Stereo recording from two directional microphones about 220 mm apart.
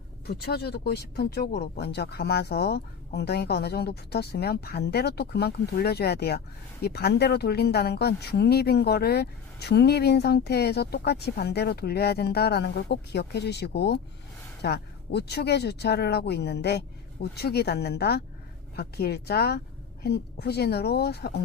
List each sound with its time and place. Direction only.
0.3 s speech: 45° left (ahead or behind)